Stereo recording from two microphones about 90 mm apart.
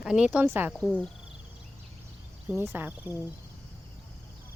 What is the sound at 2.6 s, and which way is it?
Speech, 25° right (ahead or behind).